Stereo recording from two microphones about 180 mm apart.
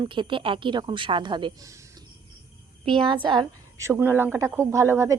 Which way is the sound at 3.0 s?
25° right (ahead or behind).